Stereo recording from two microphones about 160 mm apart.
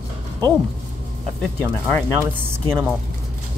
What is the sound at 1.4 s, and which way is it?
Speech, 10° left (ahead or behind).